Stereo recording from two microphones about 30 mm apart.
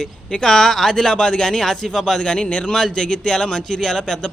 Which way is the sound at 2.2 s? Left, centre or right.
Left.